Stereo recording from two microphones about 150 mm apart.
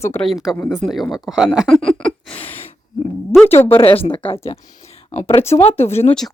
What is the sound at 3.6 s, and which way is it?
Speech, 35° left (ahead or behind).